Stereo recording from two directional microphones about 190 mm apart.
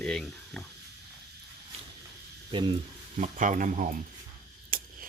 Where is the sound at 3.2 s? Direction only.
45° right (ahead or behind).